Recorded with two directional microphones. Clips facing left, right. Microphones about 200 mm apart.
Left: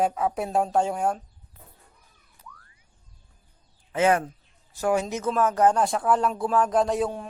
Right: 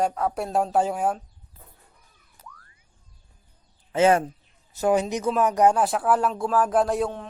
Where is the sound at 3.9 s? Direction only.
25° right (ahead or behind); by 7.1 s centre (ahead or behind).